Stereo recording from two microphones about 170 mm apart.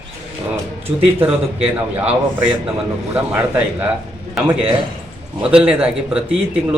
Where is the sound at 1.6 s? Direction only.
10° right (ahead or behind).